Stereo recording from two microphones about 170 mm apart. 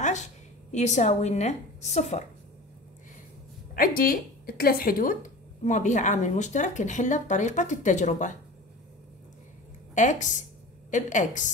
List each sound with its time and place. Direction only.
0.7 s a woman's voice: 45° left (ahead or behind)
3.7 s a woman's voice: 55° left (ahead or behind)
9.9 s a woman's voice: 45° left (ahead or behind)